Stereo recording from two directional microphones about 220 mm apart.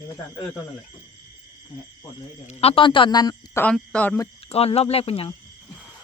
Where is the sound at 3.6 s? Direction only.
5° left (ahead or behind).